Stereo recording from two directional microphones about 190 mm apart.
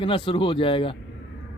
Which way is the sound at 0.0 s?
25° left (ahead or behind).